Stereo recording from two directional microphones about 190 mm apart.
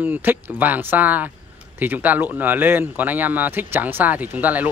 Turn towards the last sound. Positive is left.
turn(degrees=-10)  # may be behind; listen again after turning